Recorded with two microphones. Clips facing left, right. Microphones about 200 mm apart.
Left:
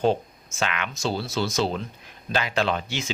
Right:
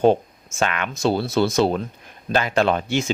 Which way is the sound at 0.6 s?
50° right (ahead or behind).